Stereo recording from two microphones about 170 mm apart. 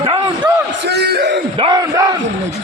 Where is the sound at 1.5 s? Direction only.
30° right (ahead or behind).